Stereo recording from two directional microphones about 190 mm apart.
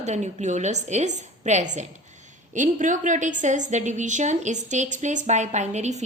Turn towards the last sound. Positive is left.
turn(degrees=-35)  # may be behind; listen again after turning